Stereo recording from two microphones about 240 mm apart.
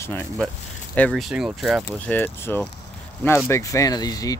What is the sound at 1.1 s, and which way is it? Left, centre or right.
Speech, centre.